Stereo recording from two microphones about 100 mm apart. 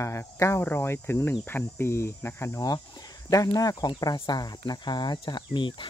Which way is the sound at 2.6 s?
40° left (ahead or behind).